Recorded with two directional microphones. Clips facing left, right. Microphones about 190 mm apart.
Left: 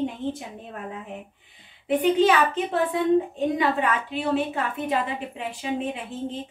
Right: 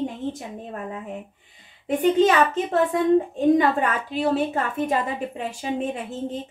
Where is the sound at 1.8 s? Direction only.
45° right (ahead or behind).